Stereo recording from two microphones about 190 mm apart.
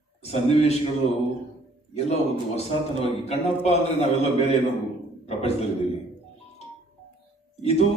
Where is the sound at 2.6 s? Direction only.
35° left (ahead or behind).